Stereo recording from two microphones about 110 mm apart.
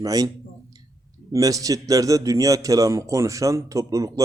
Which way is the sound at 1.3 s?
30° right (ahead or behind).